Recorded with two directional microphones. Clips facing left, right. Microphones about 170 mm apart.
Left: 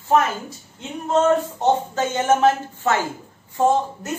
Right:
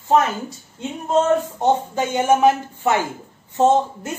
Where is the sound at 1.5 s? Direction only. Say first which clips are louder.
Right 1 dB; 15° right (ahead or behind).